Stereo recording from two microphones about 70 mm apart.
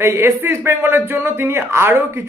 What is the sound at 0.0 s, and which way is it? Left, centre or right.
Speech, right.